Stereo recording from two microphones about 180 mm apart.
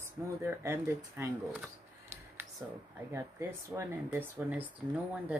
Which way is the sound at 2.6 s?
10° right (ahead or behind).